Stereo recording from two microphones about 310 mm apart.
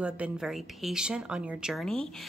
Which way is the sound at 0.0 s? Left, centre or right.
Centre.